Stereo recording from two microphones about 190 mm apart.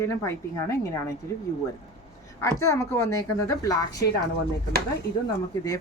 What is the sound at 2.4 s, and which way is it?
Speech, 15° left (ahead or behind).